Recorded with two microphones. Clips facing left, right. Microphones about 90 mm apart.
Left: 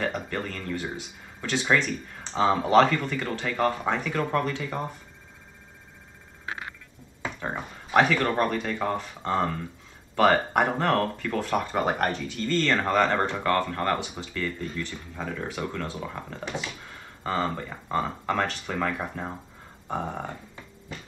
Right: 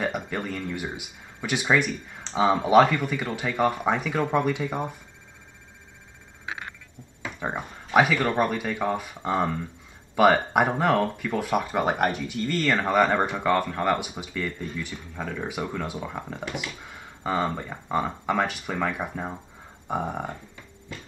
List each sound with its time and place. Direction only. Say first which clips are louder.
0.0 s speech: right 1 dB; 10° right (ahead or behind)
7.3 s speech: right 3 dB; 15° right (ahead or behind)
7.9 s speech: right 1 dB; 5° right (ahead or behind)